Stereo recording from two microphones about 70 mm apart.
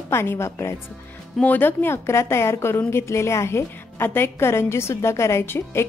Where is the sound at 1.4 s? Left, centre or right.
Left.